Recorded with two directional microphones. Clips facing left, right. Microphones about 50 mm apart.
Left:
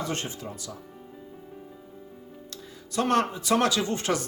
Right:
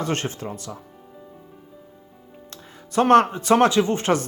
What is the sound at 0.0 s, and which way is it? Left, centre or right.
Speech, right.